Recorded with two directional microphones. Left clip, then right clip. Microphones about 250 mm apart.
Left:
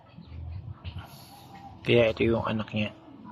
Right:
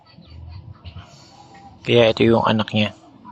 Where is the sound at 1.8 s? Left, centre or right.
Centre.